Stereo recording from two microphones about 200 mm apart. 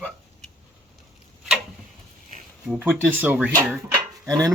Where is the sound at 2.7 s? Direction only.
5° right (ahead or behind).